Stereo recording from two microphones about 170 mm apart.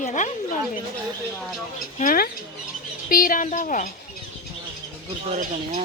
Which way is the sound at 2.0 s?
60° left (ahead or behind).